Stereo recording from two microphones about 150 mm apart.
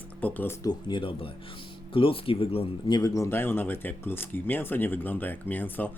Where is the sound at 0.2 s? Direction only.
10° left (ahead or behind).